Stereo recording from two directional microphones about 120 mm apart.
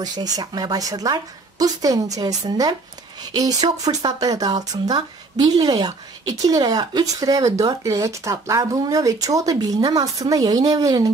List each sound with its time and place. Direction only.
0.0 s a woman's voice: 35° right (ahead or behind)